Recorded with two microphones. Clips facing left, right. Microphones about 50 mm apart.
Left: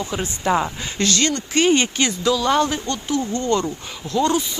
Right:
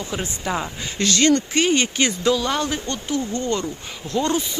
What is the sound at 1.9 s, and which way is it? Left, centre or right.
Speech, centre.